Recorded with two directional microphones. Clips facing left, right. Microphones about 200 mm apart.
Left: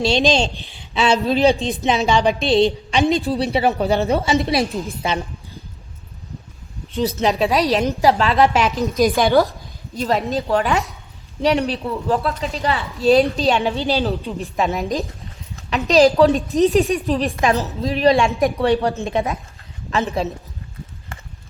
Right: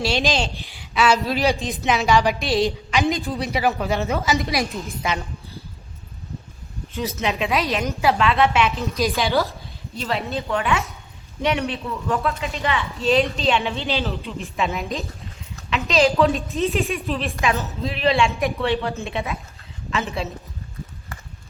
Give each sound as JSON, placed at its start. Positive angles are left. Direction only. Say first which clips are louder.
{"t": 0.0, "sound": "a woman's voice", "louder": "left 5 dB", "side_deg": 25}
{"t": 7.0, "sound": "a woman's voice", "louder": "left 6 dB", "side_deg": 35}